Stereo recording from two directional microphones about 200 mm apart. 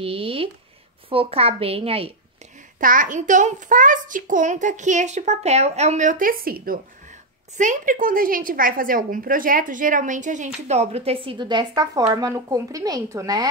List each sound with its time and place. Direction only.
0.0 s a sound: 30° right (ahead or behind)
1.1 s a woman's voice: 30° right (ahead or behind)
2.8 s a woman's voice: 40° right (ahead or behind); by 13.5 s 15° right (ahead or behind)